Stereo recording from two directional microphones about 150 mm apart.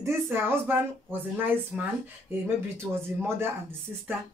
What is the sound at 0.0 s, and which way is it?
Speech, 15° right (ahead or behind).